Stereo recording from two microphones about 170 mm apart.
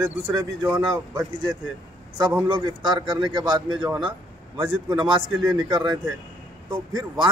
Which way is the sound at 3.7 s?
10° right (ahead or behind).